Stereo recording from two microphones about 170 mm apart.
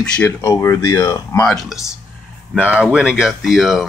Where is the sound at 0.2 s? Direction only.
15° left (ahead or behind).